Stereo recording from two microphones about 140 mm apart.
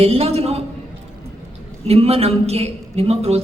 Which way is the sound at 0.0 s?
45° right (ahead or behind).